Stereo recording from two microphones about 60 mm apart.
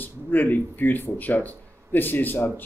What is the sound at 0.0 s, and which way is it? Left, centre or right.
Speech, left.